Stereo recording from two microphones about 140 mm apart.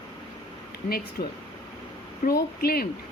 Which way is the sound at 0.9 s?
90° left.